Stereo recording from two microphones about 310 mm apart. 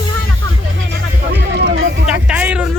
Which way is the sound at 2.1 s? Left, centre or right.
Centre.